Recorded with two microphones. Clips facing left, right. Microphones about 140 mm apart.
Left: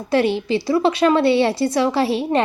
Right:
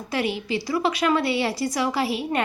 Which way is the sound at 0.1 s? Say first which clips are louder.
Left 8 dB; 30° left (ahead or behind).